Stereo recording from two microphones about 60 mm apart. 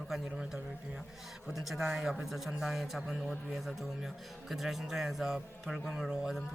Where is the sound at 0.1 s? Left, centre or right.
Centre.